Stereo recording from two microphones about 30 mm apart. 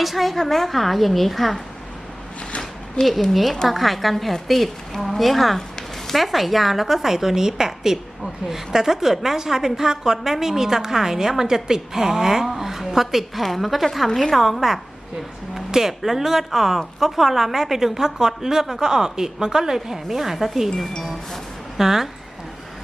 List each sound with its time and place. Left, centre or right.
0.0 s a woman's voice: centre
3.0 s a woman's voice: left
3.3 s a woman's voice: centre
14.6 s a woman's voice: centre
21.8 s a woman's voice: centre